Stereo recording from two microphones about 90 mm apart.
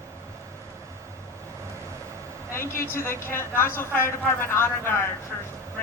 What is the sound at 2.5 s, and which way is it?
Speech, 30° left (ahead or behind).